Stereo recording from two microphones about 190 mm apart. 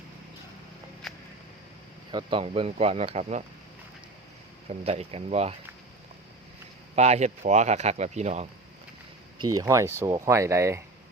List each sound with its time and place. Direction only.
2.1 s speech: 30° right (ahead or behind)
4.8 s speech: 30° right (ahead or behind)
6.9 s speech: 35° right (ahead or behind)
9.4 s speech: 20° right (ahead or behind)